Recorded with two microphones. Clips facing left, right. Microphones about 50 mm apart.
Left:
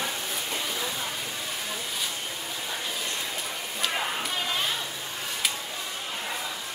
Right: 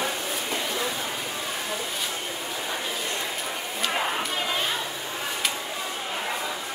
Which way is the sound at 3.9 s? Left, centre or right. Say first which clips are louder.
Right 4 dB; centre.